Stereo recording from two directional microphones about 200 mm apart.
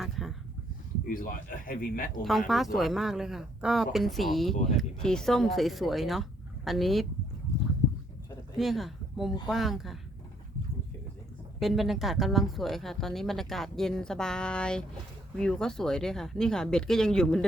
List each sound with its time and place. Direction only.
0.0 s a sound: centre (ahead or behind)
1.0 s speech: 45° left (ahead or behind)
2.5 s a woman's voice: centre (ahead or behind)
8.5 s a woman's voice: centre (ahead or behind)
11.6 s a woman's voice: centre (ahead or behind)